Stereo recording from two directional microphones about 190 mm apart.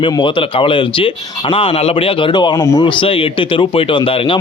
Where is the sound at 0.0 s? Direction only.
25° left (ahead or behind).